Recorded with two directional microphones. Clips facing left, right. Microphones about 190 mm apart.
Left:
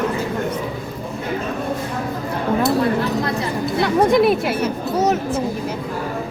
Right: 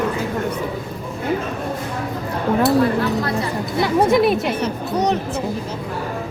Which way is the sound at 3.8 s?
Centre (ahead or behind).